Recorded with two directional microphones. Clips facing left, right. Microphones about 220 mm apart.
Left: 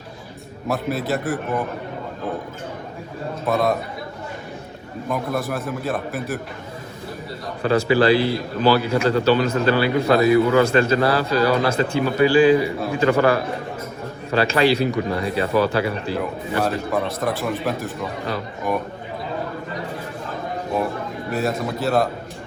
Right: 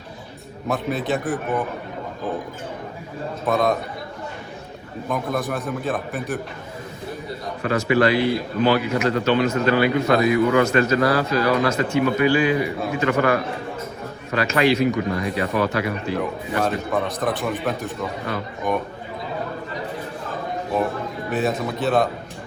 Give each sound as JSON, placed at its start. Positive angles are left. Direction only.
{"t": 0.7, "sound": "a man's voice", "side_deg": 0}
{"t": 3.4, "sound": "a man's voice", "side_deg": 0}
{"t": 5.0, "sound": "a man's voice", "side_deg": 0}
{"t": 7.6, "sound": "a man's voice", "side_deg": 30}
{"t": 16.1, "sound": "a man's voice", "side_deg": 0}
{"t": 21.2, "sound": "a man's voice", "side_deg": 0}